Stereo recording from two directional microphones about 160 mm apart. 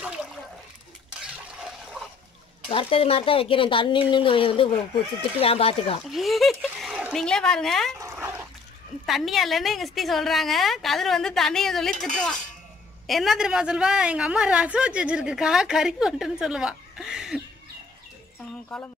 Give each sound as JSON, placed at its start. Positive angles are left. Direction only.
{"t": 2.7, "sound": "speech", "side_deg": 35}
{"t": 6.0, "sound": "speech", "side_deg": 0}
{"t": 8.0, "sound": "dog", "side_deg": -15}
{"t": 9.0, "sound": "a woman's voice", "side_deg": 0}
{"t": 18.7, "sound": "a woman's voice", "side_deg": 0}